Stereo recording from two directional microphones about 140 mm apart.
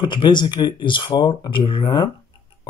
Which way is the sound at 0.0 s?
35° left (ahead or behind).